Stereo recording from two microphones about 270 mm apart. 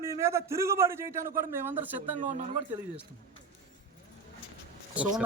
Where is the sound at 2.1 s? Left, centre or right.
Right.